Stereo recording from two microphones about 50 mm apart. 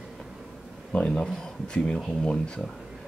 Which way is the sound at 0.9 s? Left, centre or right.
Centre.